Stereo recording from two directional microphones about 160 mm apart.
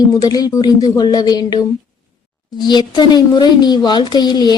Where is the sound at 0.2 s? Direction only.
25° left (ahead or behind).